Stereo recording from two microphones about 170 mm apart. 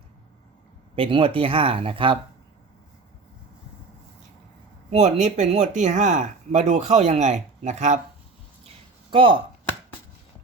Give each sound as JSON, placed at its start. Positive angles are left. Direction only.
{"t": 0.9, "sound": "speech", "side_deg": -30}
{"t": 4.9, "sound": "speech", "side_deg": -45}
{"t": 8.6, "sound": "a sound", "side_deg": -30}